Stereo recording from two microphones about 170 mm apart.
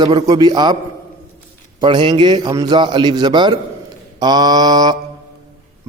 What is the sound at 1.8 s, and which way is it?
A man's voice, 30° right (ahead or behind).